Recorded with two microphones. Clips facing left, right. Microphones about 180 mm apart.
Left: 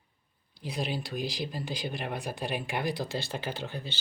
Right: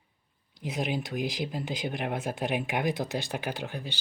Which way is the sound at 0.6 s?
20° right (ahead or behind).